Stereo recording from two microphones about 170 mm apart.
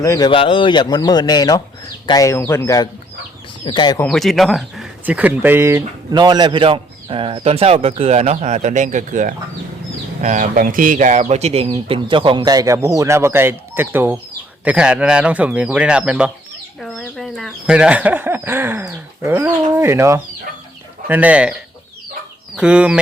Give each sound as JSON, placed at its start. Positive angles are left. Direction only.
{"t": 0.0, "sound": "speech", "side_deg": 20}
{"t": 4.0, "sound": "speech", "side_deg": 5}
{"t": 22.5, "sound": "speech", "side_deg": -5}